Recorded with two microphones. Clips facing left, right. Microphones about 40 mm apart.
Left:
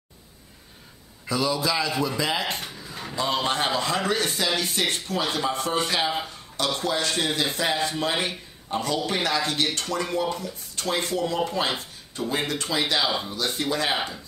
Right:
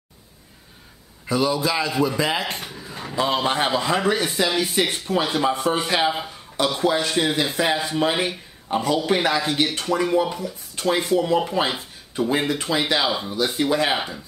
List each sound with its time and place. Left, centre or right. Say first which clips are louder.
1.2 s speech: right 4 dB; centre
1.9 s speech: right 4 dB; centre
2.1 s speech: right 3 dB; centre
2.5 s a sound: right 1 dB; centre
3.2 s speech: right 4 dB; centre
13.1 s speech: right 2 dB; centre
13.4 s speech: right 8 dB; centre
13.9 s speech: right 2 dB; centre